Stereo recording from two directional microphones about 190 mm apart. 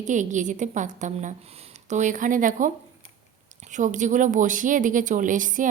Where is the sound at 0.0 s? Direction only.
40° right (ahead or behind).